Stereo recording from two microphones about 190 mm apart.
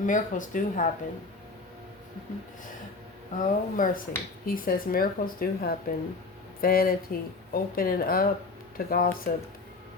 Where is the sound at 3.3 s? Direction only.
45° left (ahead or behind).